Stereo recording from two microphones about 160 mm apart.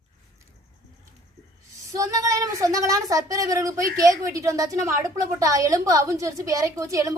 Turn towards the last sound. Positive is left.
turn(degrees=-20)  # may be behind; listen again after turning